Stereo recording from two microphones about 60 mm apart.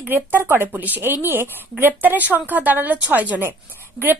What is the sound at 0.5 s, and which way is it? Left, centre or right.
A woman's voice, right.